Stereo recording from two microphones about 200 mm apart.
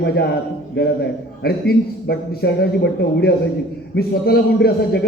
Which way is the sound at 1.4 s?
50° left (ahead or behind).